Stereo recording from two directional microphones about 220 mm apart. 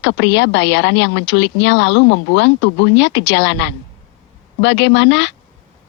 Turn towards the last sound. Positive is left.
turn(degrees=55)  # may be behind; listen again after turning